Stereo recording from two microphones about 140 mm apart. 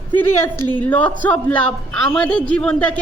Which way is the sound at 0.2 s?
15° left (ahead or behind).